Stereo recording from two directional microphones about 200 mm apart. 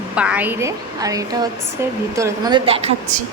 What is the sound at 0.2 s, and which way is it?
A woman's voice, 5° right (ahead or behind).